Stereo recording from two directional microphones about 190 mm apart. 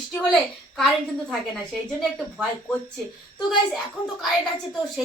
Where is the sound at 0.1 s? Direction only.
5° left (ahead or behind).